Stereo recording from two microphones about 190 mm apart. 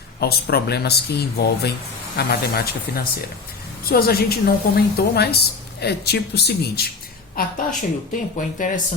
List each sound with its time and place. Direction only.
0.2 s a woman's voice: 55° left (ahead or behind)
7.3 s speech: 45° left (ahead or behind)